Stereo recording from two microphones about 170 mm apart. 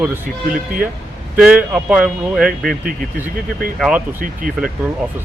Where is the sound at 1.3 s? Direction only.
10° right (ahead or behind).